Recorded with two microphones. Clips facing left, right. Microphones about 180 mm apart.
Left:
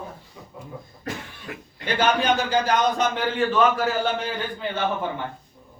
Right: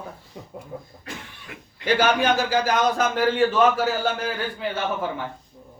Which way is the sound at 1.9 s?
5° right (ahead or behind).